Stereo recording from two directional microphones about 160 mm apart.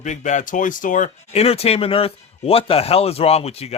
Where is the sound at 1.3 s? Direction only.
40° left (ahead or behind).